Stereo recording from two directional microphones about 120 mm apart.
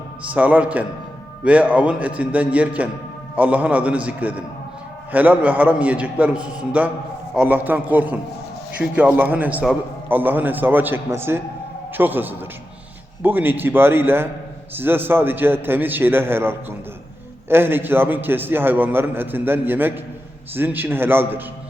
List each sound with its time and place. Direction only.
0.3 s a man's voice: 15° right (ahead or behind)